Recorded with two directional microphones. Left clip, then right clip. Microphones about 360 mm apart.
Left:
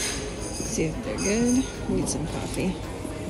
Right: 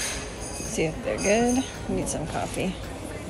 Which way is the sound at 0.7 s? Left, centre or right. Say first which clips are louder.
Right 3 dB; right.